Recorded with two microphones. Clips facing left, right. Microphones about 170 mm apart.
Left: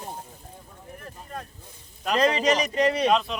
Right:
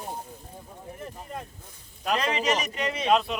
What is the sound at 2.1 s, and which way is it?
Speech, 40° left (ahead or behind).